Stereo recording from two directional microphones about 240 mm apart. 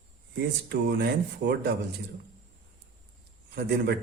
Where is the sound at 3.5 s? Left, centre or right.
Right.